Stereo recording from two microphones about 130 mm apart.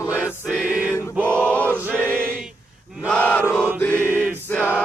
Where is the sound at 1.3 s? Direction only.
10° left (ahead or behind).